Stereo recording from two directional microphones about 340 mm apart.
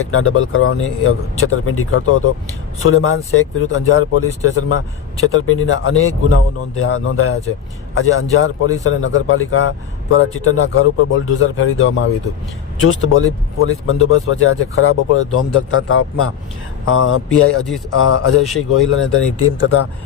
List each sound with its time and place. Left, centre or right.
0.1 s speech: left